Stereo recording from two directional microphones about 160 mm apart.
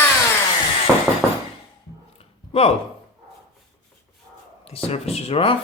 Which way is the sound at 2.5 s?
40° left (ahead or behind).